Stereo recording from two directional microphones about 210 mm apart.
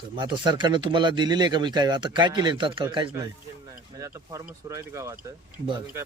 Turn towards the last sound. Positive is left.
turn(degrees=-15)  # may be behind; listen again after turning